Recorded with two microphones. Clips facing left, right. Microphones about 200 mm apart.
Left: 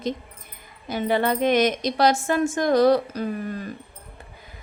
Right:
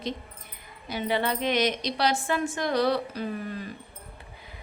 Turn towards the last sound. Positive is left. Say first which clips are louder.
# left 4 dB
turn(degrees=45)  # may be behind; listen again after turning